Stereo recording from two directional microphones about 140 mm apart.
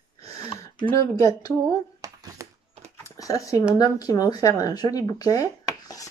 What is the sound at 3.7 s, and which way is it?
Speech, 25° left (ahead or behind).